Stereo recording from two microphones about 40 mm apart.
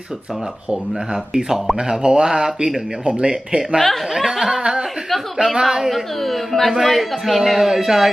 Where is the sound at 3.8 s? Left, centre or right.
Centre.